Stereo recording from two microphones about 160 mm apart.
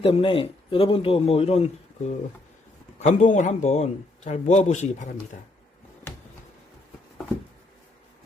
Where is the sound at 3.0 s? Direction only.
50° left (ahead or behind).